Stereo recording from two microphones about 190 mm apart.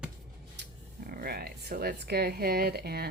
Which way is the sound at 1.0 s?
55° right (ahead or behind).